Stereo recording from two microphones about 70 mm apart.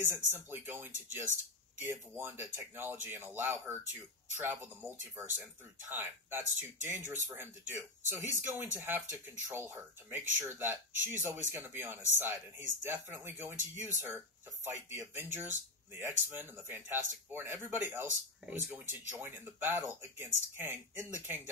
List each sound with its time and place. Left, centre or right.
0.0 s speech: right